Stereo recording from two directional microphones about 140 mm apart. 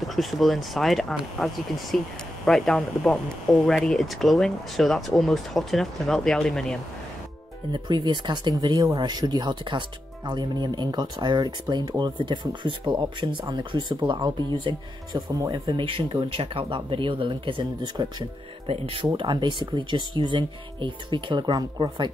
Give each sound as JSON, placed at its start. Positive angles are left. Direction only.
{"t": 0.0, "sound": "speech", "side_deg": 0}
{"t": 7.7, "sound": "speech", "side_deg": -35}